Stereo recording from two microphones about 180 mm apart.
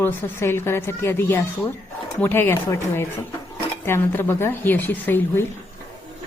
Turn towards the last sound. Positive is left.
turn(degrees=10)  # may be behind; listen again after turning